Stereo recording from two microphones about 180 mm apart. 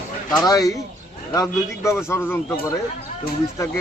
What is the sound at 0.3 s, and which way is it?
A man's voice, 20° left (ahead or behind).